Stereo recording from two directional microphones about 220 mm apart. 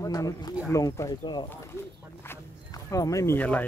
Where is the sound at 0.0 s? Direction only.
15° left (ahead or behind).